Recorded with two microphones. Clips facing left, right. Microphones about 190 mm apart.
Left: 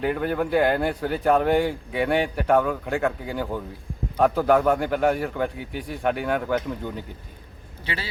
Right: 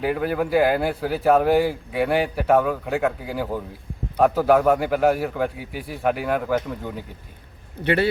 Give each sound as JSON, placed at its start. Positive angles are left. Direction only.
{"t": 0.0, "sound": "a man's voice", "side_deg": -5}
{"t": 7.9, "sound": "speech", "side_deg": -60}